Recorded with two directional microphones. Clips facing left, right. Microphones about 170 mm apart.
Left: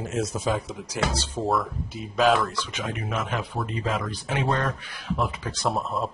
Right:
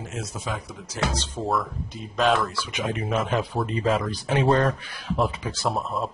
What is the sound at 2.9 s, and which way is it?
Speech, 30° right (ahead or behind).